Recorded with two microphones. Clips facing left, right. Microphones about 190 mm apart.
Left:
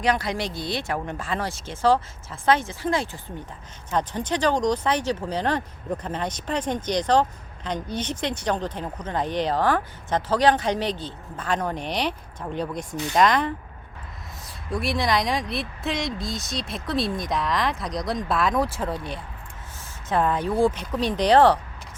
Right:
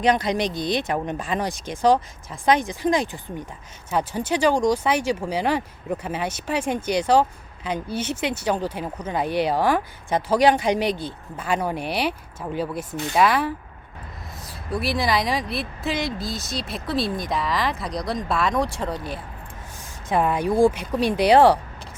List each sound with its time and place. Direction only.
0.0 s speech: 20° right (ahead or behind); by 19.2 s centre (ahead or behind)
20.1 s speech: 10° right (ahead or behind)